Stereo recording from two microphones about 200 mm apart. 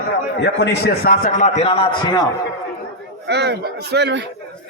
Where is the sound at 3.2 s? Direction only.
55° right (ahead or behind).